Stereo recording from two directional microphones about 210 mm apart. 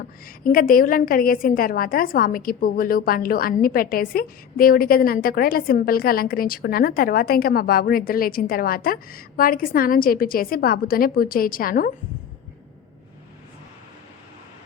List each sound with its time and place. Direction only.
0.4 s a woman's voice: 40° left (ahead or behind)